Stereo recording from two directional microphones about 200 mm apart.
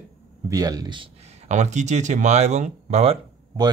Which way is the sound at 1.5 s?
35° right (ahead or behind).